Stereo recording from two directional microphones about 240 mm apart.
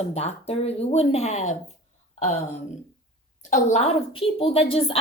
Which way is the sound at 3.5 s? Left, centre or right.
Left.